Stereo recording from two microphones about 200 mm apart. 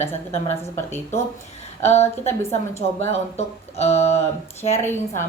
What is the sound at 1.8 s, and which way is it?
Speech, 35° left (ahead or behind).